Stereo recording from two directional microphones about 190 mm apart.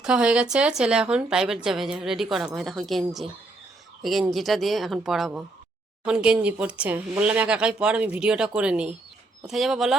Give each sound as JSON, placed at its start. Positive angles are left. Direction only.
{"t": 0.0, "sound": "speech", "side_deg": -5}